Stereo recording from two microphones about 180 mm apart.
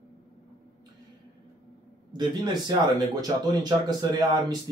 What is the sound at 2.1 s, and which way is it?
Speech, 25° right (ahead or behind).